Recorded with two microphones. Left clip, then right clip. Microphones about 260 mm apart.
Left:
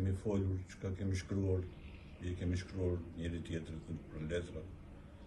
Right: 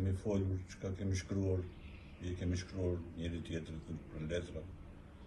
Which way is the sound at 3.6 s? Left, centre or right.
Right.